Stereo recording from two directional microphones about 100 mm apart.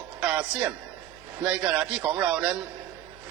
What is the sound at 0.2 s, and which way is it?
A man's voice, 15° right (ahead or behind).